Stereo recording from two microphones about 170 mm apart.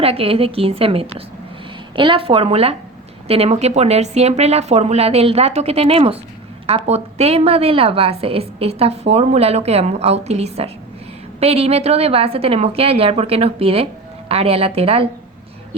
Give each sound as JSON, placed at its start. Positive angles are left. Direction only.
{"t": 0.0, "sound": "a woman's voice", "side_deg": -35}